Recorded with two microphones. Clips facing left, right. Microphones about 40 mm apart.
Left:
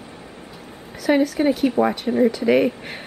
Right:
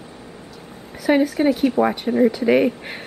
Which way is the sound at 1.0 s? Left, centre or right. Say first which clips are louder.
Right 1 dB; centre.